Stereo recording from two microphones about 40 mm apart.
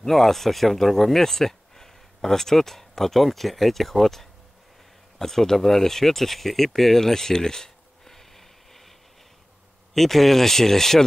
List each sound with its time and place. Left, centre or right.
0.0 s speech: centre
9.9 s speech: centre